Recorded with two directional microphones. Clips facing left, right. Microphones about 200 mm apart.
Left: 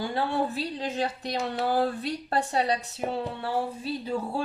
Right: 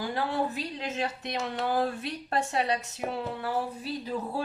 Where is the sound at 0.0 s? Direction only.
30° left (ahead or behind).